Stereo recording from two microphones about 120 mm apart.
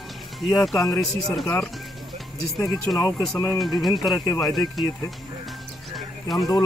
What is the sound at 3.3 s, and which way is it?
Speech, 30° left (ahead or behind).